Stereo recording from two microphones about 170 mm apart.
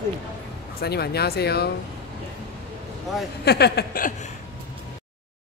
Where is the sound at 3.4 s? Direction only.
70° left (ahead or behind).